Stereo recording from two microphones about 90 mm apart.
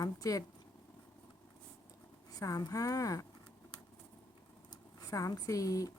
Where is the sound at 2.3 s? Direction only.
40° left (ahead or behind).